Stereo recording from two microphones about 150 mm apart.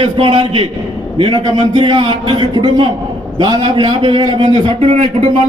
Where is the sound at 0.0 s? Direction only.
35° right (ahead or behind).